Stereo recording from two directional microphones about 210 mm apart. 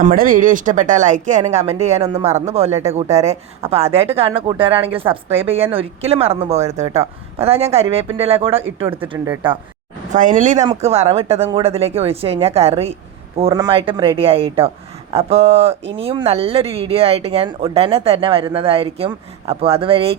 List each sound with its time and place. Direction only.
0.0 s speech: 40° right (ahead or behind); by 4.7 s 25° right (ahead or behind)
5.1 s speech: 15° right (ahead or behind)
5.4 s speech: 30° right (ahead or behind)
8.9 s speech: 10° right (ahead or behind)
10.1 s speech: 40° right (ahead or behind)